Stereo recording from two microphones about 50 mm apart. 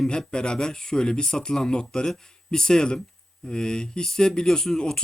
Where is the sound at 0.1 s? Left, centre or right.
Centre.